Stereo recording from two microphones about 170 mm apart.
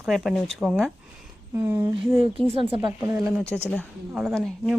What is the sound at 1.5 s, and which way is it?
Speech, 15° right (ahead or behind).